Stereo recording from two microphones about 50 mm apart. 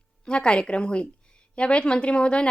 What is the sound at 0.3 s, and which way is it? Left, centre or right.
A woman's voice, left.